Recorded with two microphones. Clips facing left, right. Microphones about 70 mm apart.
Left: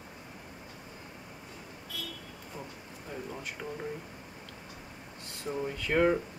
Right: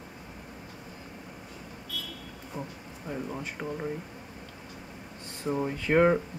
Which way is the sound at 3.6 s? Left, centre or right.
Right.